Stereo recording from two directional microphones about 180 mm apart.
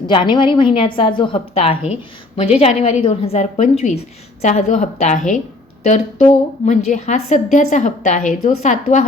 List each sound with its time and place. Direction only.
0.1 s a woman's voice: 25° left (ahead or behind); by 9.0 s 40° left (ahead or behind)